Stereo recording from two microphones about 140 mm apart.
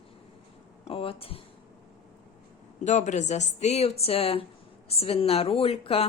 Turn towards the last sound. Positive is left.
turn(degrees=45)  # may be behind; listen again after turning